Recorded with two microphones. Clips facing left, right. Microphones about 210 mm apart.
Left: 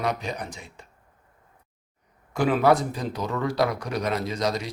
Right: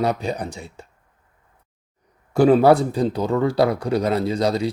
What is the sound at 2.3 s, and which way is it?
Speech, 35° right (ahead or behind).